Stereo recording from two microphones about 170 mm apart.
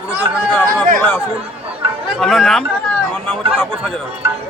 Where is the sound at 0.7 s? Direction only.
55° right (ahead or behind).